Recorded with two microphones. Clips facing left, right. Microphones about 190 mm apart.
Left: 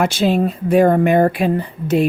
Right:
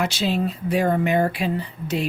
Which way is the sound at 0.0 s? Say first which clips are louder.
Left 7 dB; 50° left (ahead or behind).